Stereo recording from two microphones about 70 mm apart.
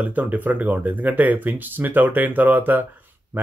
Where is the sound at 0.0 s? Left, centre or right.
Right.